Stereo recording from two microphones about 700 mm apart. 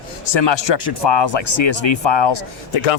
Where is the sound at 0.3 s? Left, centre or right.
Left.